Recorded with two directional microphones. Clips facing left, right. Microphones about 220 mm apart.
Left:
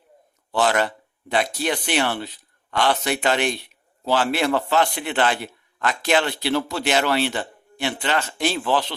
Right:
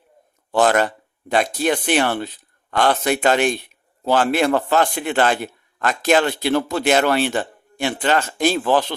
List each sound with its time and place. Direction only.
0.5 s speech: 50° right (ahead or behind)